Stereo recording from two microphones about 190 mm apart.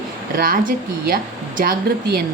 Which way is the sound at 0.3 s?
50° right (ahead or behind).